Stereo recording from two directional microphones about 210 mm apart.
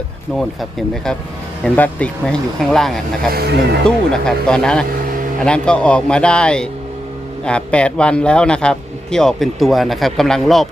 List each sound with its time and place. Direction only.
0.3 s speech: centre (ahead or behind)
3.2 s speech: 50° right (ahead or behind)
3.8 s speech: 5° left (ahead or behind)